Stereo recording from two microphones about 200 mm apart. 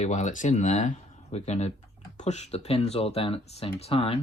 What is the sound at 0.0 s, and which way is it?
Speech, 35° left (ahead or behind).